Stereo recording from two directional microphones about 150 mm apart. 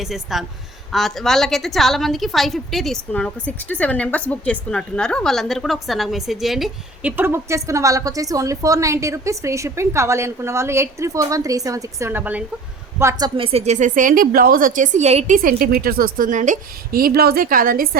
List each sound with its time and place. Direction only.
0.0 s a woman's voice: centre (ahead or behind)
7.2 s a woman's voice: 15° right (ahead or behind)
13.0 s a woman's voice: 25° right (ahead or behind); by 15.4 s 50° right (ahead or behind)
15.4 s a woman's voice: 80° right